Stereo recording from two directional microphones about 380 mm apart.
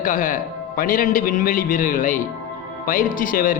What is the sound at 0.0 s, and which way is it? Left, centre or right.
A man's voice, left.